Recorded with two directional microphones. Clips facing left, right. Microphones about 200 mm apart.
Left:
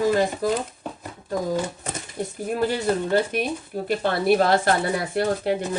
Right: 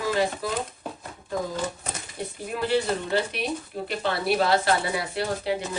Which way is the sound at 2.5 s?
45° left (ahead or behind).